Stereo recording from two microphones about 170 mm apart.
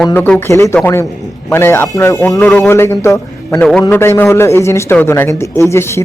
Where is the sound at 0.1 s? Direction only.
10° left (ahead or behind).